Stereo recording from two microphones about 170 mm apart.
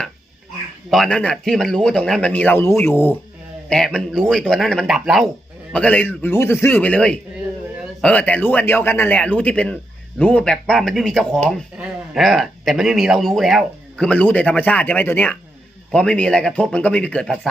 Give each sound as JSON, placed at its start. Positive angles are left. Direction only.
{"t": 0.9, "sound": "speech", "side_deg": 5}
{"t": 5.7, "sound": "speech", "side_deg": 10}